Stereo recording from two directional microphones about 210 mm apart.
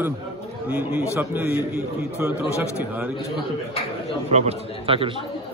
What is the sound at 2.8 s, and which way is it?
Speech, 10° right (ahead or behind).